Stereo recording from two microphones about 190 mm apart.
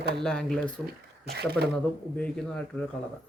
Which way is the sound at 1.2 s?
60° right (ahead or behind).